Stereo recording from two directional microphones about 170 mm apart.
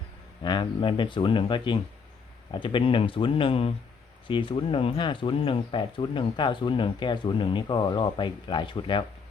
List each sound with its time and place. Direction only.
0.4 s speech: 25° left (ahead or behind)